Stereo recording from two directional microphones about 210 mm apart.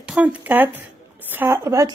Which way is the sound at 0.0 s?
5° right (ahead or behind).